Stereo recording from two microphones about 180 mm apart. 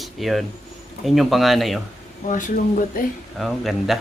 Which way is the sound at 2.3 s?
45° left (ahead or behind).